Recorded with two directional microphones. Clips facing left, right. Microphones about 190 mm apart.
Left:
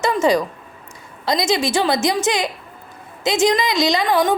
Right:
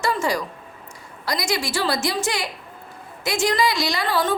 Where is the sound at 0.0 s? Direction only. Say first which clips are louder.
Left 6 dB; 20° left (ahead or behind).